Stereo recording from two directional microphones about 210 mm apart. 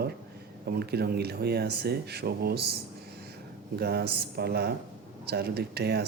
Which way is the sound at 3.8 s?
50° right (ahead or behind).